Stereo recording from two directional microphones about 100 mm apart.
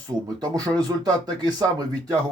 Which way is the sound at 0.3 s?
40° right (ahead or behind).